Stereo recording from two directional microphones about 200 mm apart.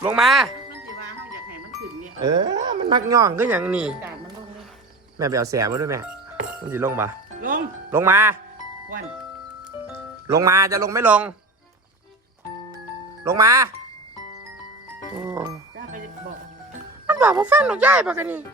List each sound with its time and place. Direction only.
0.0 s speech: 5° right (ahead or behind)
2.2 s speech: 20° right (ahead or behind); by 4.1 s 5° right (ahead or behind)
5.1 s speech: 15° right (ahead or behind)
9.9 s speech: 15° right (ahead or behind)
13.2 s speech: 15° right (ahead or behind)
15.1 s speech: 15° right (ahead or behind)
17.1 s music: 10° right (ahead or behind)
17.4 s speech: 5° right (ahead or behind)